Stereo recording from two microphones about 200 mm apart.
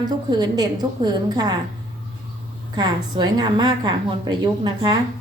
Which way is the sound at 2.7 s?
20° right (ahead or behind).